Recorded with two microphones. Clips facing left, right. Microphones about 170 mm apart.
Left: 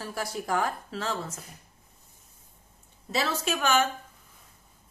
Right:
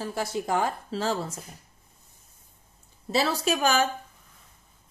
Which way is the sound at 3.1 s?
35° right (ahead or behind).